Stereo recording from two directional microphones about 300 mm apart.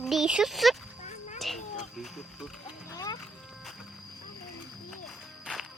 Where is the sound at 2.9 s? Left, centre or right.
Centre.